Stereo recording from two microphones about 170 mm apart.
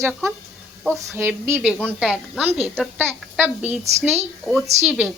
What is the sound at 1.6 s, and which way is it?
Speech, 10° left (ahead or behind).